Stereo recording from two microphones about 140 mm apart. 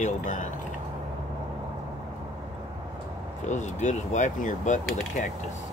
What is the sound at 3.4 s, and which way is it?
Mechanisms, 60° left (ahead or behind).